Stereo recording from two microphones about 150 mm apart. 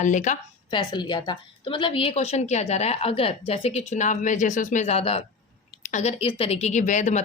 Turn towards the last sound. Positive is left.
turn(degrees=55)  # may be behind; listen again after turning